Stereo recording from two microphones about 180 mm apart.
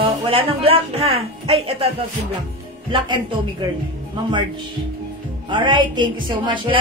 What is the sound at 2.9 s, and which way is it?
Speech, 25° right (ahead or behind).